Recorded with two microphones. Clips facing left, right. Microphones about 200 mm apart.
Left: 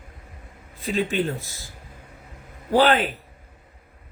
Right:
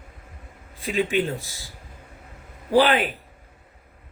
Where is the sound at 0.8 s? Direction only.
15° right (ahead or behind).